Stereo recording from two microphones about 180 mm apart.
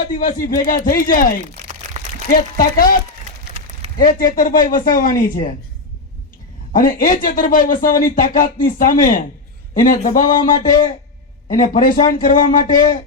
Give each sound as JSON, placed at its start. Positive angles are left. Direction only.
{"t": 0.0, "sound": "speech", "side_deg": 50}
{"t": 2.0, "sound": "a sound", "side_deg": -40}
{"t": 2.3, "sound": "speech", "side_deg": 50}
{"t": 4.0, "sound": "speech", "side_deg": 50}
{"t": 6.7, "sound": "speech", "side_deg": 50}
{"t": 10.2, "sound": "speech", "side_deg": 20}
{"t": 11.5, "sound": "speech", "side_deg": 50}